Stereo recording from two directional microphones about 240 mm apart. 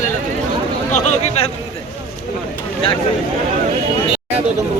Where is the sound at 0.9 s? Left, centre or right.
Left.